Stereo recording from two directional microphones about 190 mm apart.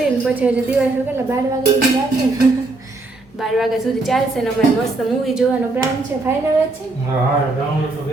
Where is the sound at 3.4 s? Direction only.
Centre (ahead or behind).